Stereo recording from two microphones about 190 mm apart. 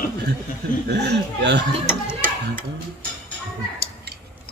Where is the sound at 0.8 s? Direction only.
60° right (ahead or behind).